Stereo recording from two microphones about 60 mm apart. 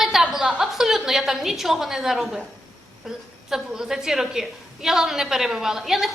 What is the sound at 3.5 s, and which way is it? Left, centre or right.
A woman's voice, centre.